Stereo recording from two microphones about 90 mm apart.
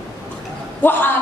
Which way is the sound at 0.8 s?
25° left (ahead or behind).